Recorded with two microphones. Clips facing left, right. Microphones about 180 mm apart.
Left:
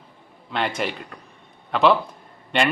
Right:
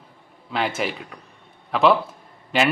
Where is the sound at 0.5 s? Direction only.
Centre (ahead or behind).